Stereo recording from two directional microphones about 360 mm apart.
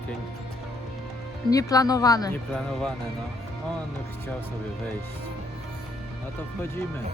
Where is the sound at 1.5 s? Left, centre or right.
Centre.